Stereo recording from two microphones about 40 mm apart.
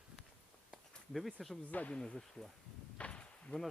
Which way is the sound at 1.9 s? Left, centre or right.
Centre.